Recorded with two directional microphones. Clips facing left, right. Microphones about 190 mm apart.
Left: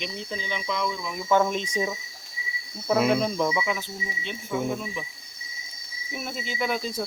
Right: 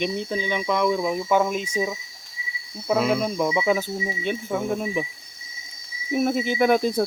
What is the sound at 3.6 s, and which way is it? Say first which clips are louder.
Speech: right 8 dB; 40° right (ahead or behind).